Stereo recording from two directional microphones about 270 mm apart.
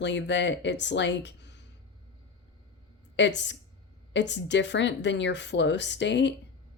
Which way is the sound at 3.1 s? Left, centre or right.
Left.